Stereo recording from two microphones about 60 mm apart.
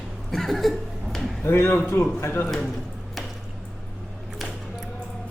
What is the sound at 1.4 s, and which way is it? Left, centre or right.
Speech, left.